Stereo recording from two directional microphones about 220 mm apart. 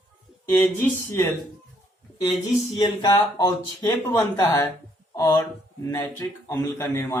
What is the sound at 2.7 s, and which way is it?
Speech, 20° left (ahead or behind).